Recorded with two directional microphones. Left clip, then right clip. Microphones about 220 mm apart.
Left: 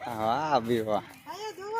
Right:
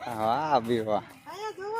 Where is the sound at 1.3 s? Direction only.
20° right (ahead or behind).